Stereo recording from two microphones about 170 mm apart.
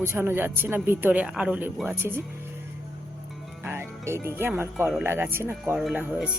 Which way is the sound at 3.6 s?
15° right (ahead or behind).